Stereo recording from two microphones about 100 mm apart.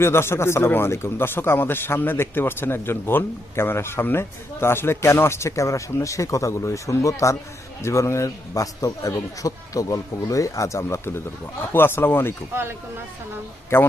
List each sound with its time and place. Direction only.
0.0 s a man's voice: 25° left (ahead or behind)
13.7 s speech: 25° left (ahead or behind)